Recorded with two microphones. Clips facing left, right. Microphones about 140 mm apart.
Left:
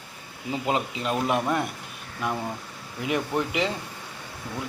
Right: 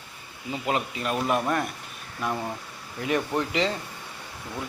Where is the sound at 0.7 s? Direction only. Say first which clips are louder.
Even; 20° left (ahead or behind).